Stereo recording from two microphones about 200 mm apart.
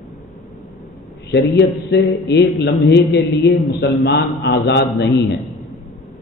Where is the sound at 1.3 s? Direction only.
55° left (ahead or behind).